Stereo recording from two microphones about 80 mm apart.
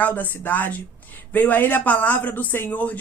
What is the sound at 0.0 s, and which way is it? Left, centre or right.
Speech, left.